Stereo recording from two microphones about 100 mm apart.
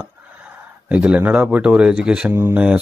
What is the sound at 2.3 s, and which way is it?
Speech, 25° right (ahead or behind).